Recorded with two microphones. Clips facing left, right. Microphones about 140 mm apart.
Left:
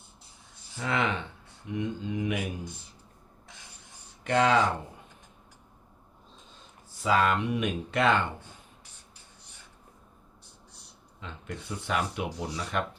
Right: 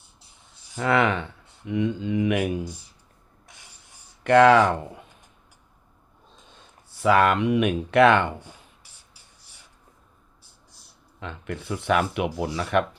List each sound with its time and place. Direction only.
0.8 s speech: 65° right (ahead or behind)
1.6 s speech: 85° right; by 2.6 s 70° right (ahead or behind)
4.2 s speech: 60° right (ahead or behind)
7.0 s speech: 65° right (ahead or behind)
11.2 s speech: 65° right (ahead or behind)